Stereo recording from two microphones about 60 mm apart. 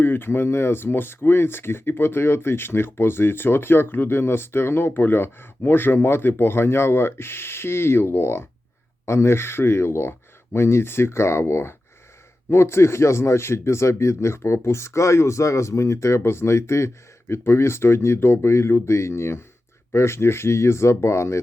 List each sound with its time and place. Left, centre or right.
0.0 s speech: left